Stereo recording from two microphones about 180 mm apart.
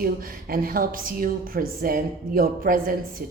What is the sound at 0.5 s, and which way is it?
A woman's voice, 55° right (ahead or behind).